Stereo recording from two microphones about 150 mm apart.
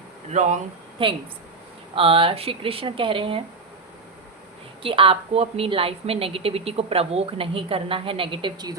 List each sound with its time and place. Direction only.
0.3 s speech: 50° right (ahead or behind)
1.0 s a woman's voice: 35° right (ahead or behind)
4.8 s a woman's voice: 35° right (ahead or behind)